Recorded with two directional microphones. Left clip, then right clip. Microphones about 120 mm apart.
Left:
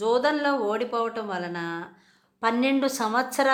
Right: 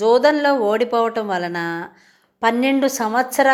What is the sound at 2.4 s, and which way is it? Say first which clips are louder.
A woman's voice: right 6 dB; 25° right (ahead or behind).